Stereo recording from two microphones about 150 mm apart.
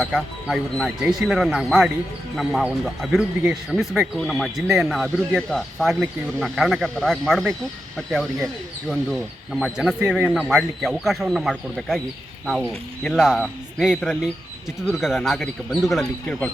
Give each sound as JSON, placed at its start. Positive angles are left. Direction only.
{"t": 0.0, "sound": "speech", "side_deg": 0}